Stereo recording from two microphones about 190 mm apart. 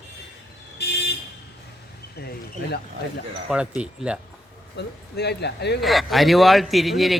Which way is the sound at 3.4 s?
5° right (ahead or behind).